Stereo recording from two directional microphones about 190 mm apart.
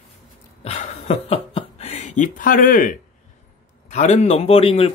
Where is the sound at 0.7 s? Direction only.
35° left (ahead or behind).